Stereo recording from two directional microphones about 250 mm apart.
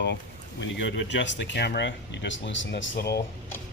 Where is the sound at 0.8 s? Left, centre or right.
Left.